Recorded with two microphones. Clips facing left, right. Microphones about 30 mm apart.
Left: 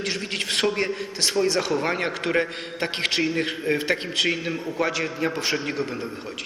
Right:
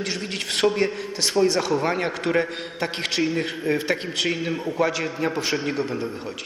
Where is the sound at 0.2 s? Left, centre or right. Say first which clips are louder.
Right 3 dB; centre.